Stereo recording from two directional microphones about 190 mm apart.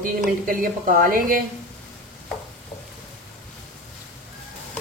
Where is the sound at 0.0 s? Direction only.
50° right (ahead or behind).